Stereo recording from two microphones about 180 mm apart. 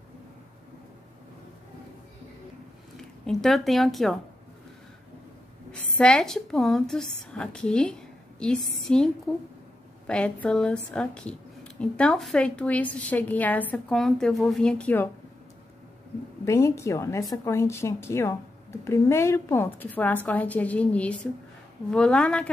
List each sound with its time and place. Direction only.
3.0 s a woman's voice: centre (ahead or behind)
5.7 s a woman's voice: 5° left (ahead or behind)
16.4 s a woman's voice: 15° left (ahead or behind)